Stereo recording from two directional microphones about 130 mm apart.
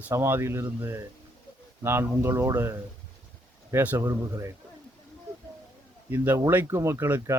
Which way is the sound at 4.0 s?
25° right (ahead or behind).